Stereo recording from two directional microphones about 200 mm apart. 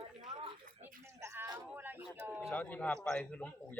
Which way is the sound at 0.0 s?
25° right (ahead or behind).